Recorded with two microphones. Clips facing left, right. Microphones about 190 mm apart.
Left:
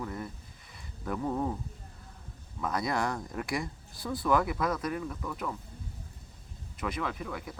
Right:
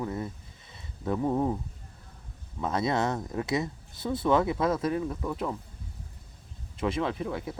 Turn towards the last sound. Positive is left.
turn(degrees=-30)  # may be behind; listen again after turning